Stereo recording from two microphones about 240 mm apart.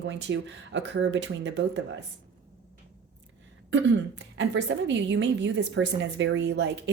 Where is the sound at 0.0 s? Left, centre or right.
Right.